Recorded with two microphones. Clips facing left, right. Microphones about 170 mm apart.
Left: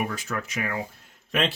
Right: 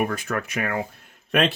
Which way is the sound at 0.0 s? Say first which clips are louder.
Right 5 dB; 55° right (ahead or behind).